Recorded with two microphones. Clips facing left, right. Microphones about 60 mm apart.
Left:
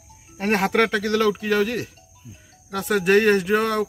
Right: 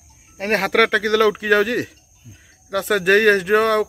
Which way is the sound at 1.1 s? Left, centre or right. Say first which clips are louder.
Right 4 dB; right.